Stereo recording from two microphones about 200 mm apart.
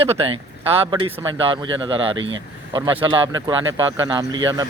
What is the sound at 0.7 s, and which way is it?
Speech, 25° right (ahead or behind).